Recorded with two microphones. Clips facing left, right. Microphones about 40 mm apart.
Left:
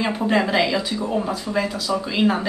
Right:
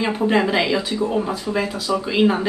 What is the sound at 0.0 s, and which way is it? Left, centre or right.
Speech, centre.